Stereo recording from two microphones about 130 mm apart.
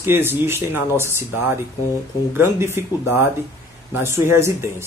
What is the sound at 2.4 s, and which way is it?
Speech, 20° right (ahead or behind).